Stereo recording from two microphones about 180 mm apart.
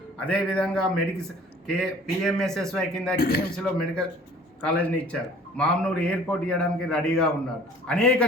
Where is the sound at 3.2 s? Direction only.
55° left (ahead or behind).